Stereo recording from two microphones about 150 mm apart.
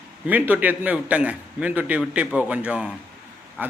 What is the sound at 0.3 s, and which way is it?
Speech, 10° right (ahead or behind).